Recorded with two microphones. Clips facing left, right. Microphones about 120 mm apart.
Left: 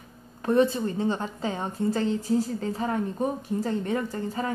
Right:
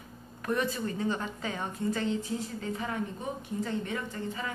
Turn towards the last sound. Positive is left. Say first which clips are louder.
# left 6 dB
turn(degrees=40)  # may be behind; listen again after turning